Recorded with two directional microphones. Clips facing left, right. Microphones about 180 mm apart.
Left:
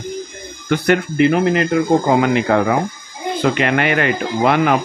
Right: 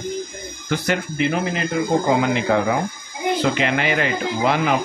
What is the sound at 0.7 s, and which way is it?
Speech, 60° left (ahead or behind).